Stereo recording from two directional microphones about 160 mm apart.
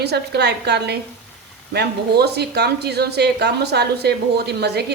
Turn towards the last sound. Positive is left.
turn(degrees=-90)